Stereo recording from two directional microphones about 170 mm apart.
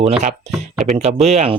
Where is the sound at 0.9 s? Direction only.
40° right (ahead or behind).